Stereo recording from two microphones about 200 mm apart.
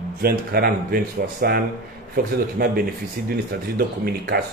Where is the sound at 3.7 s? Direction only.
50° right (ahead or behind).